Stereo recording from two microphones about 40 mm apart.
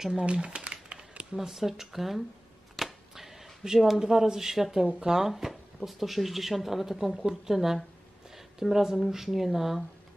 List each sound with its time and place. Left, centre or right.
0.2 s speech: right
1.3 s speech: centre
2.7 s a sound: centre
4.0 s speech: centre